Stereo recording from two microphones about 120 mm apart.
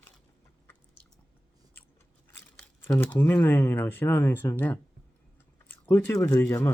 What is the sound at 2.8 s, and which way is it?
Speech, 20° left (ahead or behind).